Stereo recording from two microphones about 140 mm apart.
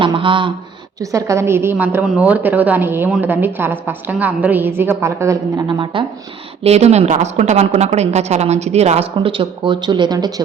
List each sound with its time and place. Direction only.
0.0 s a sound: 35° right (ahead or behind)
1.1 s a woman's voice: 20° right (ahead or behind)
5.6 s speech: 35° right (ahead or behind)
6.6 s a woman's voice: 50° right (ahead or behind)
9.1 s speech: 35° right (ahead or behind)